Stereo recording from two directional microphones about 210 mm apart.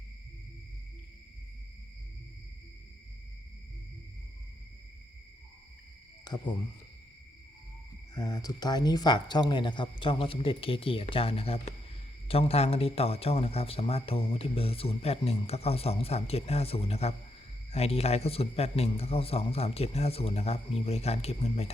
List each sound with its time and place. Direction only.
6.2 s cricket: 20° left (ahead or behind)
8.1 s speech: 15° left (ahead or behind)